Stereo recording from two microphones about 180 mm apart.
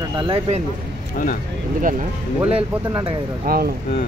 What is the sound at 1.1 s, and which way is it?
Speech, 50° left (ahead or behind).